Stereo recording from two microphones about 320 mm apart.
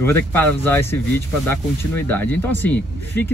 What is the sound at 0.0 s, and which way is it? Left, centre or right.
Speech, centre.